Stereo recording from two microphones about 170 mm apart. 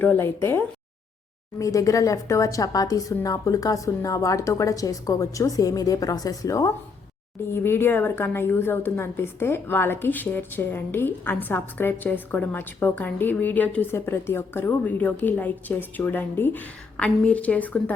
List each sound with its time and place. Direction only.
0.0 s a woman's voice: 10° left (ahead or behind)